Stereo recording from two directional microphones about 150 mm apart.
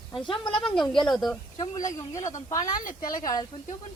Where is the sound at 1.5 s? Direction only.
30° left (ahead or behind).